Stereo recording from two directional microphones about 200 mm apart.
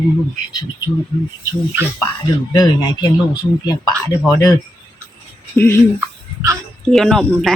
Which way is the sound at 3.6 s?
20° left (ahead or behind).